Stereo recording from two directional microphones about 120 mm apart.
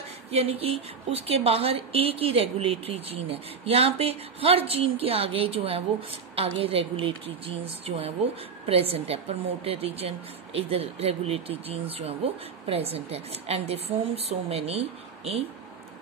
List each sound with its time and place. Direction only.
0.3 s a woman's voice: 60° right (ahead or behind)